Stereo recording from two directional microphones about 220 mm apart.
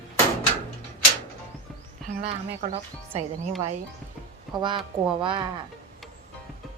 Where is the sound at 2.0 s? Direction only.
30° right (ahead or behind).